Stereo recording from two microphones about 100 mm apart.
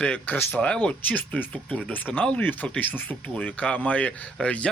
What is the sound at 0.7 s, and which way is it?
Speech, 10° left (ahead or behind).